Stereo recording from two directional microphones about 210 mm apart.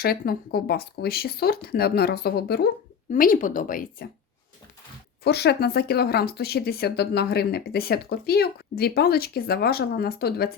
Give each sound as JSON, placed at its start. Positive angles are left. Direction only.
{"t": 0.0, "sound": "speech", "side_deg": 45}
{"t": 5.2, "sound": "speech", "side_deg": 50}